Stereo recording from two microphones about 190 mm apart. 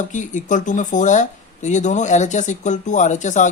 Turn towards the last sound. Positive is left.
turn(degrees=40)  # may be behind; listen again after turning